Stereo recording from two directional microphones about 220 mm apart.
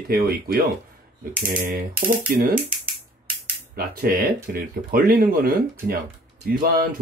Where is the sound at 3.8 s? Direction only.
40° right (ahead or behind).